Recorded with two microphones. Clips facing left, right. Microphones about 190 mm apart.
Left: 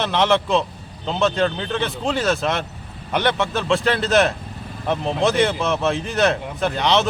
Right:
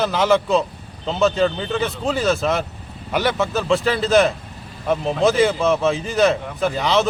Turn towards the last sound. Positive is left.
turn(degrees=0)  # may be behind; listen again after turning